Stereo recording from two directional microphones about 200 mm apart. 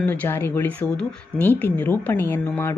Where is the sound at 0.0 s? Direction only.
10° left (ahead or behind).